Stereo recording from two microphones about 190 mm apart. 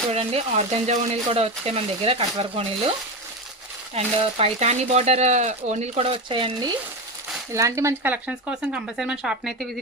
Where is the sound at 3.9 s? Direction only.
35° right (ahead or behind).